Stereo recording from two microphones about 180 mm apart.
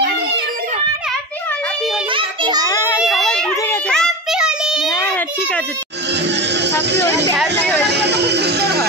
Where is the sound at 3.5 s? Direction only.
15° left (ahead or behind); by 4.9 s 5° right (ahead or behind).